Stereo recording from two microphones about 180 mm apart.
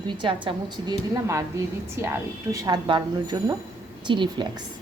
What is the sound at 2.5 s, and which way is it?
A woman's voice, 25° right (ahead or behind).